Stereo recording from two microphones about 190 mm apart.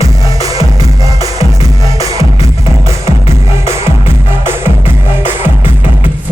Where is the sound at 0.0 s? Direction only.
20° right (ahead or behind).